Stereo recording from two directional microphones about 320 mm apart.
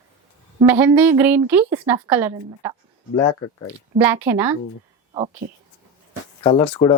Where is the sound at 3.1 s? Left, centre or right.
Centre.